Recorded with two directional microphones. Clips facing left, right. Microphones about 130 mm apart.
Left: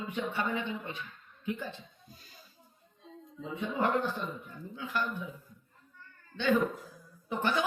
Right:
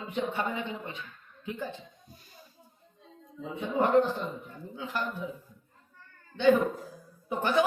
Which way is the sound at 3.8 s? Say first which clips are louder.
Right 6 dB; 20° right (ahead or behind).